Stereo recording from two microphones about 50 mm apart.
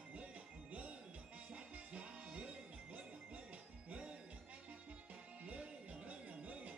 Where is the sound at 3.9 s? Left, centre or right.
Centre.